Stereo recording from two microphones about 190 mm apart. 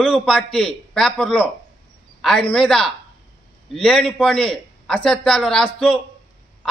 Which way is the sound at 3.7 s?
5° left (ahead or behind).